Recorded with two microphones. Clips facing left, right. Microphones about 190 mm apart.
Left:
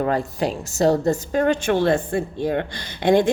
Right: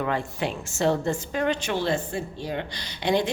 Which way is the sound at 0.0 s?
40° left (ahead or behind).